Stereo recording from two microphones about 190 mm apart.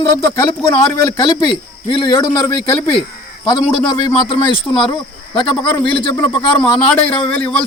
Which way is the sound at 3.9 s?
25° left (ahead or behind).